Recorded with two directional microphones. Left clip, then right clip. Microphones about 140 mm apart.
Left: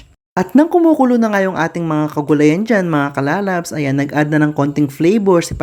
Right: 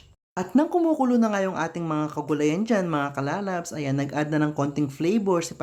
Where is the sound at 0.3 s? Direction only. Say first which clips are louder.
Left 10 dB; 35° left (ahead or behind).